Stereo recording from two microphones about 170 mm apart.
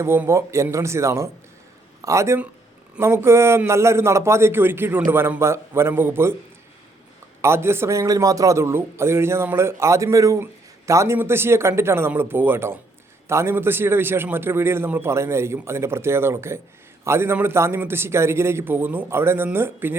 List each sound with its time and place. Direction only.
0.0 s a man's voice: 15° right (ahead or behind)
7.4 s a man's voice: 15° right (ahead or behind)